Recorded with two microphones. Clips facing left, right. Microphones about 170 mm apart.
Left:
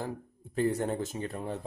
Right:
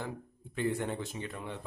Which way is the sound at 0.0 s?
40° left (ahead or behind).